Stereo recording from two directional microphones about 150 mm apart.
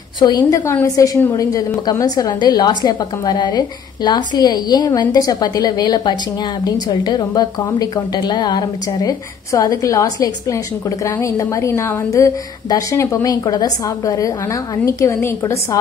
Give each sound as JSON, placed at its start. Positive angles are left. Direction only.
{"t": 0.2, "sound": "a woman's voice", "side_deg": 25}